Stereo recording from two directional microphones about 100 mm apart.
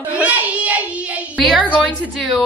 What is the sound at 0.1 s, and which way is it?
Child singing, 15° right (ahead or behind).